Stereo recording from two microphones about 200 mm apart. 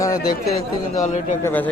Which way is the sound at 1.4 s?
10° left (ahead or behind).